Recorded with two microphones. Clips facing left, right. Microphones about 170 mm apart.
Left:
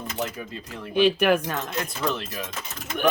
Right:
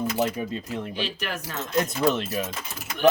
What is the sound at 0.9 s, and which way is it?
Speech, 60° left (ahead or behind).